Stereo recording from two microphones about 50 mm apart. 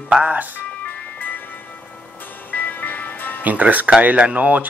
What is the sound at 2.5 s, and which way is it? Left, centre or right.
Music, left.